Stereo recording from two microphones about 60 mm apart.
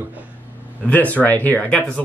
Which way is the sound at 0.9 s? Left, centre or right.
Left.